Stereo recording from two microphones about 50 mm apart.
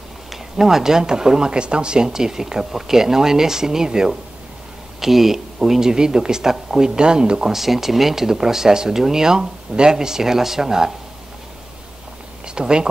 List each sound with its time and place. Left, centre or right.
0.3 s speech: centre
7.5 s speech: centre
12.5 s speech: centre